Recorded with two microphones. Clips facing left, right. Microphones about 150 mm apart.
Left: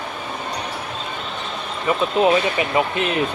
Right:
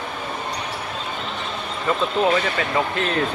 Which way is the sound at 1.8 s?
15° left (ahead or behind).